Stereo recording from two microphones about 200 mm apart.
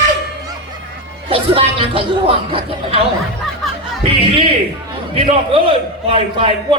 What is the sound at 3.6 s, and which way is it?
Music, centre (ahead or behind).